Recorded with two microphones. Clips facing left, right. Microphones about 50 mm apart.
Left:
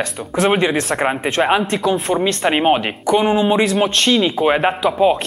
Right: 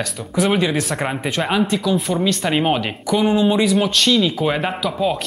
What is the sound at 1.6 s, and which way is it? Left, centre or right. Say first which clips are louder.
Speech: left 1 dB; left.